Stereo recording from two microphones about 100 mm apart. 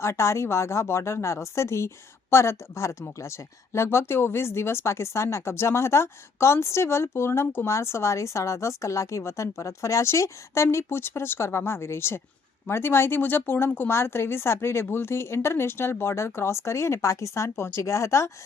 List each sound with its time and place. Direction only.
0.0 s speech: 30° left (ahead or behind)